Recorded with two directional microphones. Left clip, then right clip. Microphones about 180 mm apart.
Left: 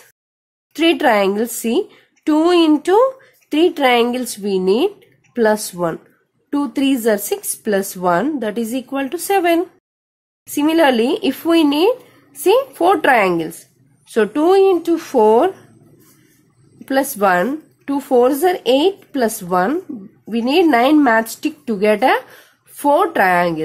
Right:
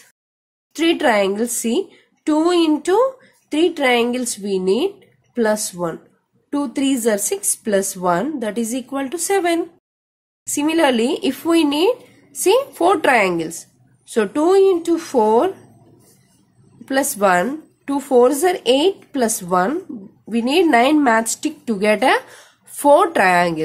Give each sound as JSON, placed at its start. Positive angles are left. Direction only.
{"t": 0.7, "sound": "speech", "side_deg": 10}
{"t": 16.8, "sound": "speech", "side_deg": 10}